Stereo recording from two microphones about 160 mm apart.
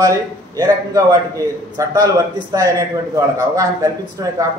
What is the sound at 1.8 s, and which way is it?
A man's voice, 20° right (ahead or behind).